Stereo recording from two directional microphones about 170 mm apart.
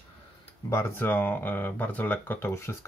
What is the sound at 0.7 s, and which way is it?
Speech, 15° left (ahead or behind).